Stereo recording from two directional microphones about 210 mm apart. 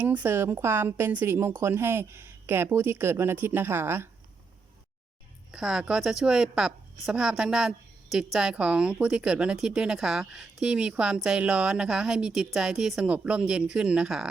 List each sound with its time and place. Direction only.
0.0 s a woman's voice: 10° right (ahead or behind)
5.5 s speech: 5° right (ahead or behind)